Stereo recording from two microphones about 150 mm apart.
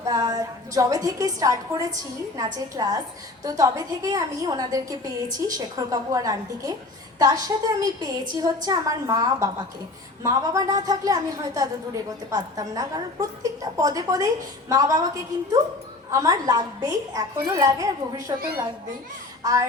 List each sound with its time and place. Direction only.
0.0 s a woman's voice: 25° right (ahead or behind)